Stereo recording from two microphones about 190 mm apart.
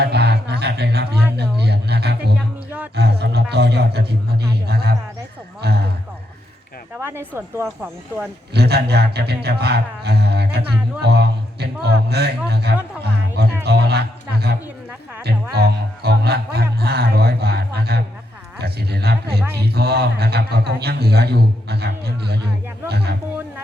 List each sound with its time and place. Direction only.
0.0 s a sound: 60° right (ahead or behind)
2.6 s music: 10° right (ahead or behind)
2.9 s a man's voice: 60° right (ahead or behind)
5.6 s a sound: 55° right (ahead or behind)
6.9 s speech: 10° right (ahead or behind)
8.5 s a man's voice: 60° right (ahead or behind)
13.7 s music: 60° right (ahead or behind)
15.2 s a man's voice: 60° right (ahead or behind)